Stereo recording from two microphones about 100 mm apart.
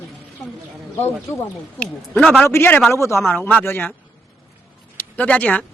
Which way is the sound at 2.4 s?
25° left (ahead or behind).